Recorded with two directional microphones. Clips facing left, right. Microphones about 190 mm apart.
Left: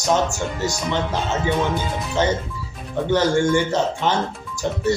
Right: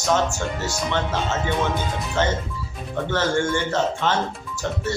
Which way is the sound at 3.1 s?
15° left (ahead or behind).